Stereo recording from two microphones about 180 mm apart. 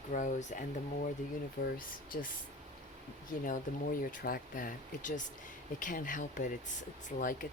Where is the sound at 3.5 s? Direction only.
50° left (ahead or behind).